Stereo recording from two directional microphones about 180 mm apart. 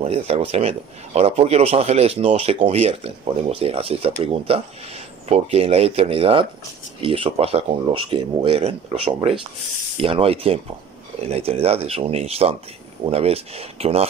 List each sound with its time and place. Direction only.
0.0 s speech: 35° right (ahead or behind)